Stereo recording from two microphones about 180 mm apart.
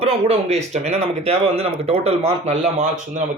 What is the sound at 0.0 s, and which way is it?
A man's voice, 35° right (ahead or behind).